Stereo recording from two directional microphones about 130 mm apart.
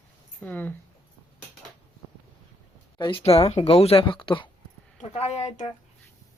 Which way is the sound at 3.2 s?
50° left (ahead or behind).